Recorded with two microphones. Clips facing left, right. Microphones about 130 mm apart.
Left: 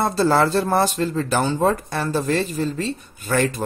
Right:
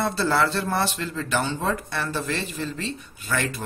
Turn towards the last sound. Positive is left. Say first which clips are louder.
# left 6 dB
turn(degrees=40)  # may be behind; listen again after turning